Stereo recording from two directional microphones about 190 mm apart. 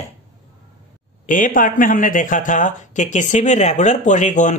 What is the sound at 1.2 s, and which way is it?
Speech, 45° left (ahead or behind).